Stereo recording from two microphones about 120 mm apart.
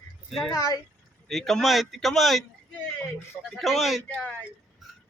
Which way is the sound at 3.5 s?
Centre (ahead or behind).